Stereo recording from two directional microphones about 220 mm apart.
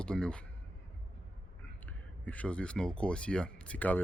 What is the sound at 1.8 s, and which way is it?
Speech, 5° left (ahead or behind).